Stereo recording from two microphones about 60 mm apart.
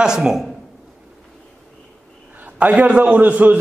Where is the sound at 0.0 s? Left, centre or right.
Centre.